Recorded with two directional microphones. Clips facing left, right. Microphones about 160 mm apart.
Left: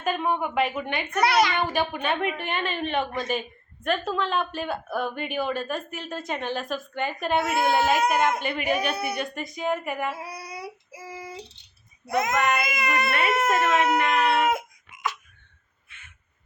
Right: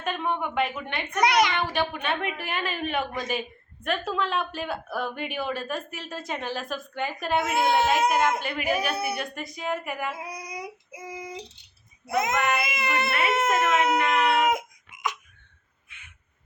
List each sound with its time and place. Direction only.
0.0 s speech: 5° left (ahead or behind)
1.2 s a child's voice: 15° right (ahead or behind)
1.7 s speech: 5° left (ahead or behind)
10.2 s child singing: 15° right (ahead or behind)
12.4 s speech: 5° right (ahead or behind)
12.6 s speech: 25° right (ahead or behind)
13.1 s speech: centre (ahead or behind)
14.4 s music: 20° right (ahead or behind)
15.9 s a sound: 15° right (ahead or behind)